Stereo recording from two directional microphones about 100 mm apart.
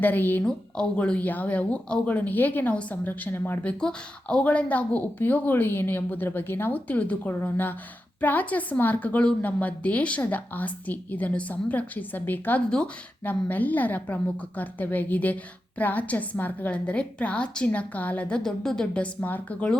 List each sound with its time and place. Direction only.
0.0 s a woman's voice: 20° left (ahead or behind)
0.4 s speech: 10° left (ahead or behind)